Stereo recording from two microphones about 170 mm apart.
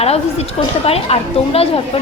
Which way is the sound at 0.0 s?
35° left (ahead or behind).